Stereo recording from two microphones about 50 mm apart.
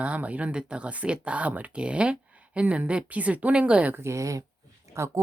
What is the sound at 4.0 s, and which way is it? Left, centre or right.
Speech, right.